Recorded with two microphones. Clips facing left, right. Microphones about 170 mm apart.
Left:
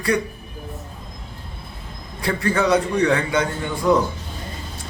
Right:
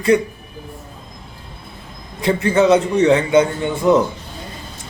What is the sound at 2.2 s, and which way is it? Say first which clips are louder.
A man's voice: right 6 dB; 20° right (ahead or behind).